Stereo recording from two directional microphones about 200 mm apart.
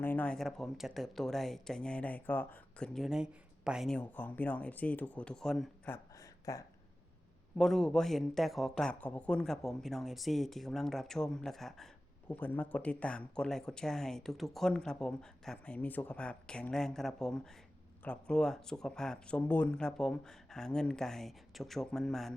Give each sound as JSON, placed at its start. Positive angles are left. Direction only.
{"t": 0.0, "sound": "speech", "side_deg": 10}
{"t": 7.6, "sound": "speech", "side_deg": 0}